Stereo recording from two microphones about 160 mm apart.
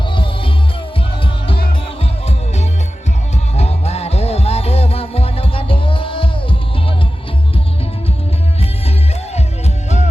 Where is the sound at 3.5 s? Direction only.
40° left (ahead or behind).